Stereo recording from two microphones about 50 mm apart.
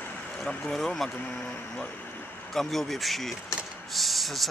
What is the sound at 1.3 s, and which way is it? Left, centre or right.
Speech, left.